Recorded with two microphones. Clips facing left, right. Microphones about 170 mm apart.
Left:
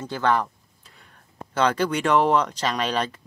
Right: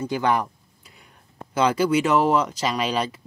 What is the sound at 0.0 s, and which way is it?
Speech, 15° right (ahead or behind).